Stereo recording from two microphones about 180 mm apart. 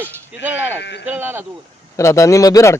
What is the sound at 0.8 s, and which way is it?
Speech, 75° left (ahead or behind).